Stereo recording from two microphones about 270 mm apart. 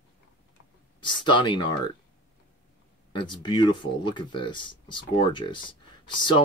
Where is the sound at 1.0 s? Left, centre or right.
Centre.